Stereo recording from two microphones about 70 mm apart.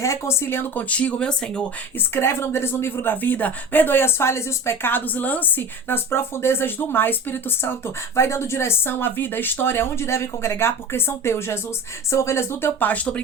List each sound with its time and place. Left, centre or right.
0.0 s speech: left; by 1.6 s centre
2.0 s speech: left
12.8 s speech: left